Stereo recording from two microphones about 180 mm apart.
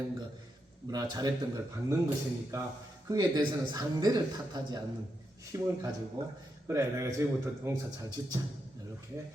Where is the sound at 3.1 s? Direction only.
20° right (ahead or behind).